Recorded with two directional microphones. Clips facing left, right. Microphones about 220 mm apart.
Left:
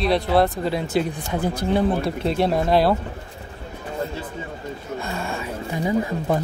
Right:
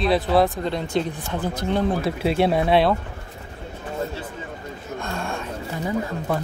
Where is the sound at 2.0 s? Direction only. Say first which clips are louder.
Right 1 dB; 5° right (ahead or behind).